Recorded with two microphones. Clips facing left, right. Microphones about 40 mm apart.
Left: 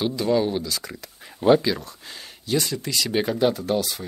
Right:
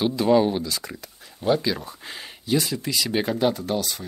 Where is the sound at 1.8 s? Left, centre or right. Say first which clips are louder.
Right 2 dB; centre.